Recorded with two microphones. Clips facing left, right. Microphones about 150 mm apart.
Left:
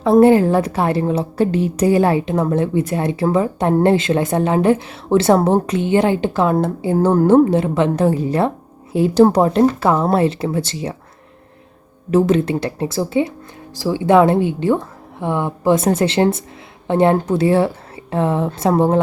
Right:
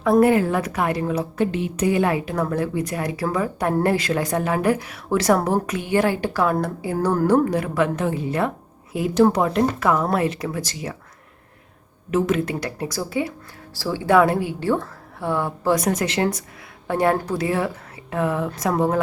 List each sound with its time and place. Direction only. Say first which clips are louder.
0.0 s a woman's voice: left 5 dB; 30° left (ahead or behind)
12.1 s a woman's voice: left 6 dB; 30° left (ahead or behind)